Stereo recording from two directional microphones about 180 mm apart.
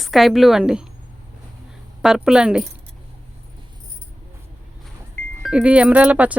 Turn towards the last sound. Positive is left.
turn(degrees=-5)  # may be behind; listen again after turning